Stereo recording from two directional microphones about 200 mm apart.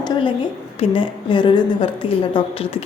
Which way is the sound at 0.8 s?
25° left (ahead or behind).